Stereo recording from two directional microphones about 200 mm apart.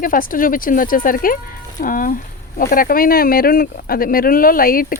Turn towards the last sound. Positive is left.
turn(degrees=45)  # may be behind; listen again after turning